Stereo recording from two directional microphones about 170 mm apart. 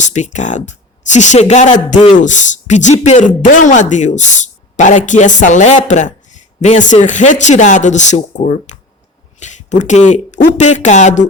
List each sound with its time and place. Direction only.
0.0 s speech: 45° left (ahead or behind)